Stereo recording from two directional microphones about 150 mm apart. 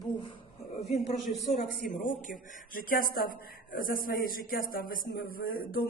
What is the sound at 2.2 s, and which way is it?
Speech, 60° left (ahead or behind).